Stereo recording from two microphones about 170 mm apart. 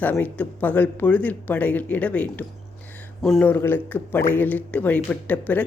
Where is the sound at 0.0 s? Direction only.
10° left (ahead or behind).